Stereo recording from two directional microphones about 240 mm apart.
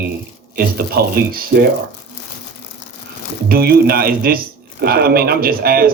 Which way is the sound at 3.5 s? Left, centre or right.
Right.